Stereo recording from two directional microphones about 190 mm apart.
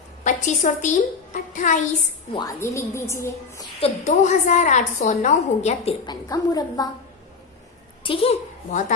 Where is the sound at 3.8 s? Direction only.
40° left (ahead or behind).